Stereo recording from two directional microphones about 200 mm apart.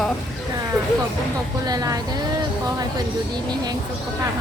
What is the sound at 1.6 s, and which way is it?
Speech, 20° right (ahead or behind).